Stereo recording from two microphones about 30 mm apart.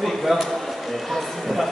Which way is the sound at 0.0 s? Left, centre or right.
Centre.